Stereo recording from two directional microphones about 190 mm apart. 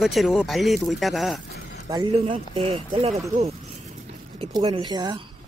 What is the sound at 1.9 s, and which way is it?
Speech, 20° right (ahead or behind).